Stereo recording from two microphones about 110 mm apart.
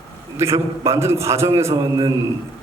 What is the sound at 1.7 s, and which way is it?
Speech, 40° right (ahead or behind).